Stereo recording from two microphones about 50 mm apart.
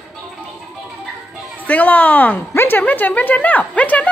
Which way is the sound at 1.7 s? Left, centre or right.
Left.